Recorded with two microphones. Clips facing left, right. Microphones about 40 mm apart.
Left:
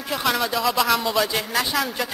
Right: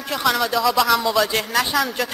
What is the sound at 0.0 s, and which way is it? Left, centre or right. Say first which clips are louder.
A woman's voice: right 2 dB; centre.